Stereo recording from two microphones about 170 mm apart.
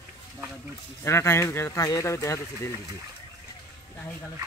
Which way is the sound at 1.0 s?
15° left (ahead or behind).